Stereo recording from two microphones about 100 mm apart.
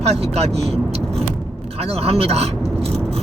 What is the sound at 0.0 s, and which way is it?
Speech, 90° right.